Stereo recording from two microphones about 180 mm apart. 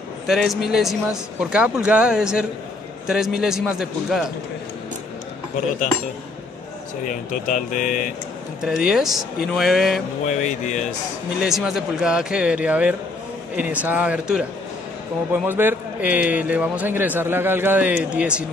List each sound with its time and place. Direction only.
0.3 s speech: centre (ahead or behind)
7.1 s speech: 45° left (ahead or behind)
8.6 s speech: 5° right (ahead or behind)
10.2 s speech: 40° left (ahead or behind)
11.4 s a man's voice: centre (ahead or behind)